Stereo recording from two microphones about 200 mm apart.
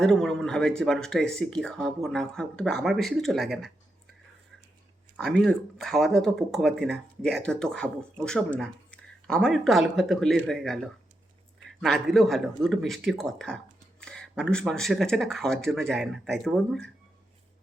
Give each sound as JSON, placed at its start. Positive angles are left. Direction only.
{"t": 0.0, "sound": "speech", "side_deg": 0}
{"t": 5.1, "sound": "speech", "side_deg": 0}